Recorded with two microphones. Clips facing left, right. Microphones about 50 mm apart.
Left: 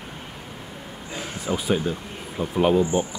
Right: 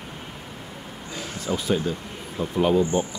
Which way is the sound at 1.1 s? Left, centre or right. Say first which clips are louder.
Left 1 dB; centre.